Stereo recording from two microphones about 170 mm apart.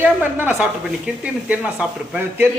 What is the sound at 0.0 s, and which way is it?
Speech, 10° right (ahead or behind).